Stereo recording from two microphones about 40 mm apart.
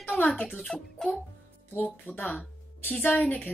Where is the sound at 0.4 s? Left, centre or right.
Centre.